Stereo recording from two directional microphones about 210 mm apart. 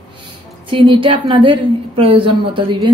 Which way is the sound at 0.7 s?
25° right (ahead or behind).